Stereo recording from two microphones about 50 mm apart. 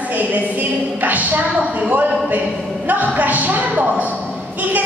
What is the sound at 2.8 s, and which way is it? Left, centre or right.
A woman's voice, right.